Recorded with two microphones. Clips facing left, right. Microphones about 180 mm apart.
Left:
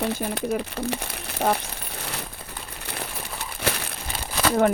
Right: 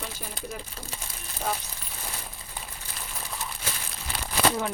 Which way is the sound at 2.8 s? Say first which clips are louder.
Left 10 dB; 65° left (ahead or behind).